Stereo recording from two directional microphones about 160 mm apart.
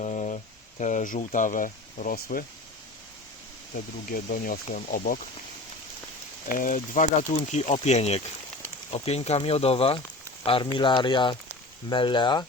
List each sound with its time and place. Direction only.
0.0 s a sound: 45° left (ahead or behind)
0.8 s speech: 50° left (ahead or behind)
4.1 s speech: 60° left (ahead or behind)
6.5 s speech: 60° left (ahead or behind); by 12.5 s 30° left (ahead or behind)